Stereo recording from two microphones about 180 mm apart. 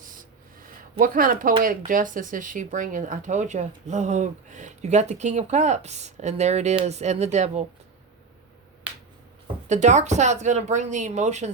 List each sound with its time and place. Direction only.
0.6 s speech: 50° right (ahead or behind)
9.6 s speech: 40° right (ahead or behind)